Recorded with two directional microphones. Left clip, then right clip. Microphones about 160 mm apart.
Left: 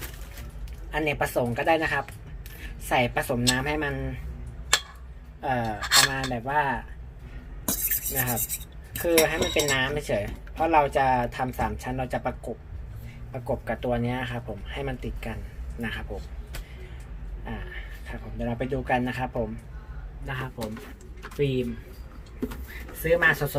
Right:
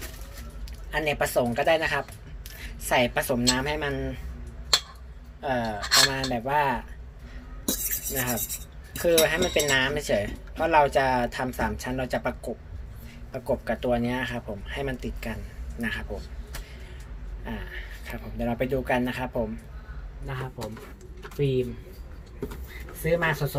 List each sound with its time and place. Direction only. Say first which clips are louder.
0.9 s speech: right 1 dB; centre (ahead or behind)
5.4 s speech: even; centre (ahead or behind); by 6.8 s 20° right (ahead or behind)
8.1 s speech: even; 5° right (ahead or behind)
13.3 s speech: right 2 dB; 5° right (ahead or behind)
18.0 s speech: right 2 dB; 10° right (ahead or behind)
20.2 s speech: left 2 dB; 10° left (ahead or behind)
23.0 s speech: left 4 dB; 10° left (ahead or behind)